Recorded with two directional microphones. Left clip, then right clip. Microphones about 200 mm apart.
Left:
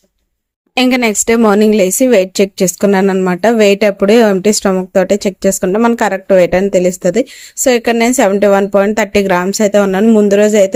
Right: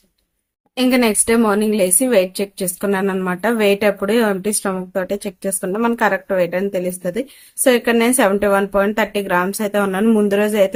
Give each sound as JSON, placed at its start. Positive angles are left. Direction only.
{"t": 0.8, "sound": "speech", "side_deg": 40}